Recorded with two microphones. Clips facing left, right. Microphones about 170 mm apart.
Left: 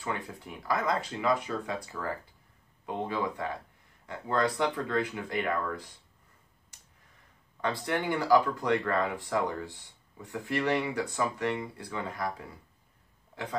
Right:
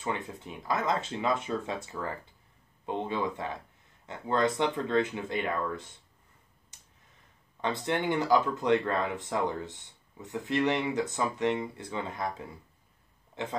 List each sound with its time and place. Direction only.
0.0 s speech: 20° right (ahead or behind)
7.6 s speech: 25° right (ahead or behind)